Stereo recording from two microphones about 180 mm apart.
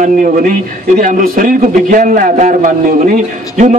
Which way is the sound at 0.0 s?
45° right (ahead or behind).